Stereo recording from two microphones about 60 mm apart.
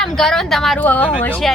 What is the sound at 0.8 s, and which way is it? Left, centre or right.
Speech, left.